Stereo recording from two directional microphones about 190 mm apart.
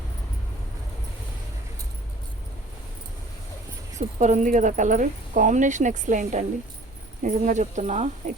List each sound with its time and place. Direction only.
3.9 s speech: 40° right (ahead or behind)